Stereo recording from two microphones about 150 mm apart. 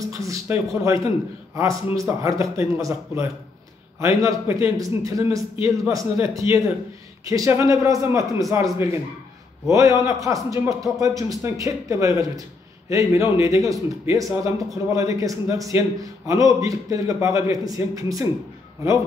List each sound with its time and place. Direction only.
0.0 s a man's voice: 20° right (ahead or behind)